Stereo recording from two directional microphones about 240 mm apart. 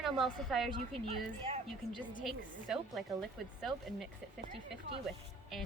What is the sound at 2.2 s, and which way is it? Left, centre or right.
Speech, centre.